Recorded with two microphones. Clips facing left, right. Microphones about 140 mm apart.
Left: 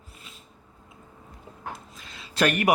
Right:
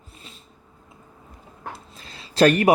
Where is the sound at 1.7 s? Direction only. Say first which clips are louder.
Right 2 dB; 30° right (ahead or behind).